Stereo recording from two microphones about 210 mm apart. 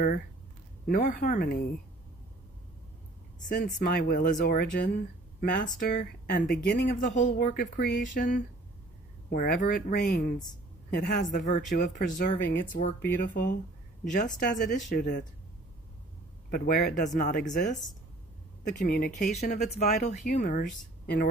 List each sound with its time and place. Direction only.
0.8 s speech: 40° left (ahead or behind)
3.3 s speech: 40° left (ahead or behind)
14.0 s speech: 35° left (ahead or behind)
16.4 s speech: 45° left (ahead or behind)